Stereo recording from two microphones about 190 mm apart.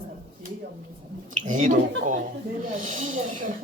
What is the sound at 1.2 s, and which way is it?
Speech, 40° right (ahead or behind).